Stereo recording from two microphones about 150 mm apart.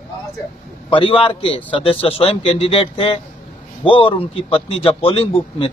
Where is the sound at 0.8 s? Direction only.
35° left (ahead or behind).